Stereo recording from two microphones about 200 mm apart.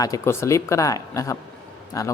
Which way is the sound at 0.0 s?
15° left (ahead or behind).